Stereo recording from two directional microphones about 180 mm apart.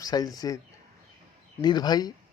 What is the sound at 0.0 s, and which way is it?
Speech, 20° left (ahead or behind).